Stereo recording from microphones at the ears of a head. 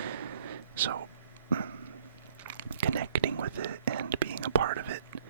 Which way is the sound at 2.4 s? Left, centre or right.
Right.